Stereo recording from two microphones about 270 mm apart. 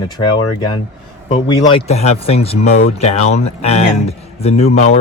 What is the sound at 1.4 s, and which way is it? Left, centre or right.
Speech, centre.